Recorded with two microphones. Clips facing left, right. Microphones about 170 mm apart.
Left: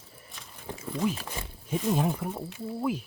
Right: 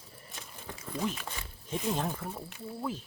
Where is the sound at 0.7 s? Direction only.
30° left (ahead or behind).